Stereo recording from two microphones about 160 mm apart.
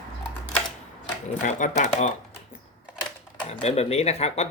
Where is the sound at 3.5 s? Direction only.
40° left (ahead or behind).